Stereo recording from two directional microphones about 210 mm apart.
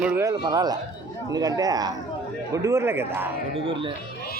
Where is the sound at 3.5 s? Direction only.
25° right (ahead or behind).